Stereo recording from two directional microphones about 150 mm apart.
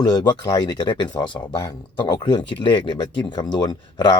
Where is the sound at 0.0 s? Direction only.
30° left (ahead or behind).